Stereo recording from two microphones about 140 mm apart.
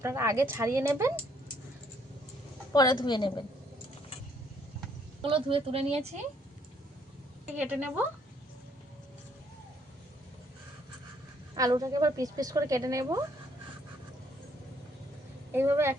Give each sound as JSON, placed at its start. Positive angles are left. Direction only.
{"t": 0.0, "sound": "a woman's voice", "side_deg": -20}
{"t": 2.7, "sound": "a woman's voice", "side_deg": 30}
{"t": 5.2, "sound": "speech", "side_deg": -40}
{"t": 7.5, "sound": "a woman's voice", "side_deg": -10}
{"t": 11.5, "sound": "a woman's voice", "side_deg": -25}
{"t": 15.5, "sound": "a woman's voice", "side_deg": -20}